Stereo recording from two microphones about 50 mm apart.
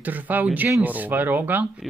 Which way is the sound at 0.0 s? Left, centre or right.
Right.